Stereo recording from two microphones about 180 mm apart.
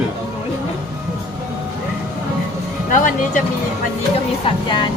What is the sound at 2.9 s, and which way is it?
Speech, 45° left (ahead or behind).